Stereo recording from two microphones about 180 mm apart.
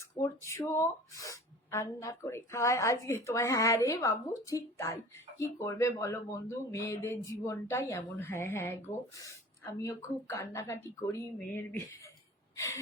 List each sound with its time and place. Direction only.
0.0 s speech: 15° left (ahead or behind)
12.5 s gasp: 15° left (ahead or behind)